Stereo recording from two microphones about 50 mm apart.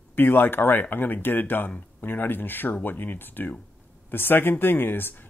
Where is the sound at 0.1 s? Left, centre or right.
Left.